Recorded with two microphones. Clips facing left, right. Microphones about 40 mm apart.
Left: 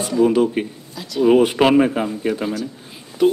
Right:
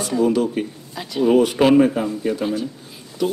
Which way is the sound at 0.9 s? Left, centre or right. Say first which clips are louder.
Left 1 dB; right.